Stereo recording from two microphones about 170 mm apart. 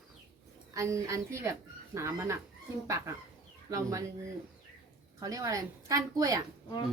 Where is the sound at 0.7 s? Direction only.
20° right (ahead or behind).